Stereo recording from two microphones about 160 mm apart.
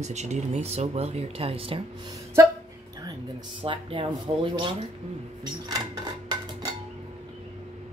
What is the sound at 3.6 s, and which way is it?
Speech, 30° right (ahead or behind).